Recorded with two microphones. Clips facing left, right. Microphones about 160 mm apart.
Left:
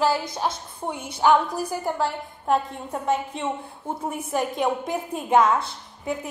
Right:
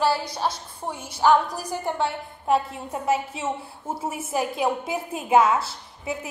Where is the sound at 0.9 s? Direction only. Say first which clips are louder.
Left 3 dB; 55° left (ahead or behind).